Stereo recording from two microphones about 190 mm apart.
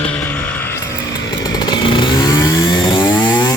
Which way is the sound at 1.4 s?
25° left (ahead or behind).